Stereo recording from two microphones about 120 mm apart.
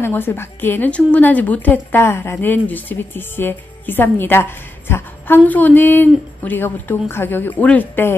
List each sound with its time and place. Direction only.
0.0 s speech: 20° left (ahead or behind)